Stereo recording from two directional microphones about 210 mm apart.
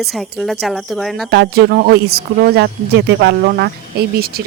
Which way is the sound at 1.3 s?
50° right (ahead or behind).